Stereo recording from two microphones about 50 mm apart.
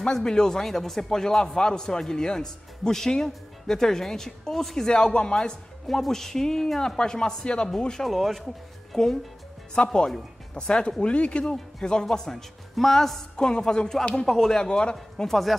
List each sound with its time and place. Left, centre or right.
0.0 s a man's voice: centre
8.0 s a man's voice: centre